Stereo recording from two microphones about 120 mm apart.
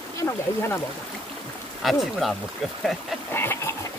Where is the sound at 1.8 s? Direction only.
Centre (ahead or behind).